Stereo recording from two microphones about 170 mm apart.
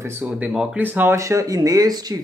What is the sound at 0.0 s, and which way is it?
A woman's voice, 10° right (ahead or behind).